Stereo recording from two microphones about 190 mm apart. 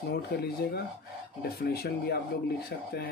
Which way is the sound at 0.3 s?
55° left (ahead or behind).